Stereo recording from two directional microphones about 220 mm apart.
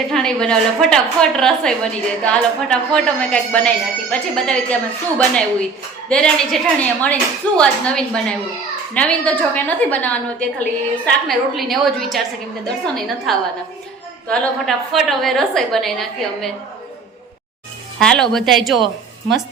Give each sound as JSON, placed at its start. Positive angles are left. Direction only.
{"t": 0.1, "sound": "a woman's voice", "side_deg": 5}
{"t": 13.3, "sound": "a woman's voice", "side_deg": 0}
{"t": 18.0, "sound": "a woman's voice", "side_deg": 5}